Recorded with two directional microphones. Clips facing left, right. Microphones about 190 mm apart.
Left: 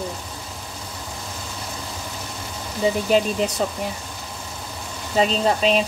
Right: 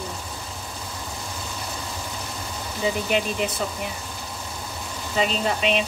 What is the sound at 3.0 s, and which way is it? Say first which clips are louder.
Speech: left 5 dB; 35° left (ahead or behind).